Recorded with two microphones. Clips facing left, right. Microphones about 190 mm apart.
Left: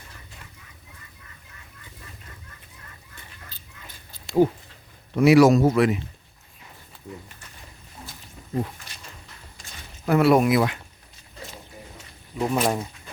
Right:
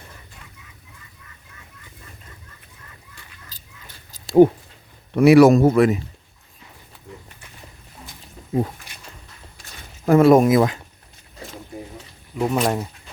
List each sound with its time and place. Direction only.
4.4 s speech: 60° right (ahead or behind)
10.1 s speech: 45° right (ahead or behind)
12.4 s speech: centre (ahead or behind)